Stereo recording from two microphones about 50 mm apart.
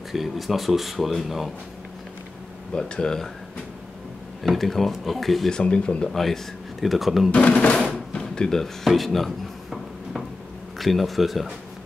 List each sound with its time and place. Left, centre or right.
0.1 s speech: centre
2.7 s speech: centre
4.4 s speech: centre
5.5 s speech: centre
6.1 s speech: centre
7.2 s speech: left
7.9 s a sound: centre
10.8 s speech: centre